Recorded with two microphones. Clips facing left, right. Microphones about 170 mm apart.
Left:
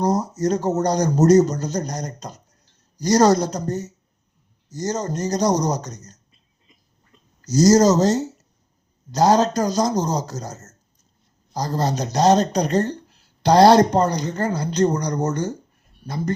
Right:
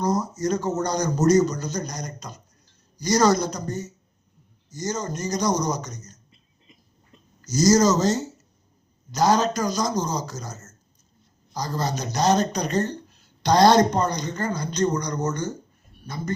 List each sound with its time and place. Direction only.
0.0 s speech: 35° left (ahead or behind)
4.8 s speech: 35° left (ahead or behind)
9.1 s speech: 35° left (ahead or behind)